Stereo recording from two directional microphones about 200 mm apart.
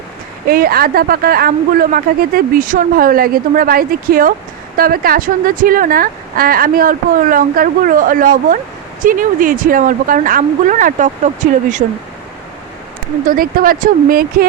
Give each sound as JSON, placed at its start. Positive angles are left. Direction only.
{"t": 0.4, "sound": "speech", "side_deg": -50}
{"t": 13.2, "sound": "speech", "side_deg": -45}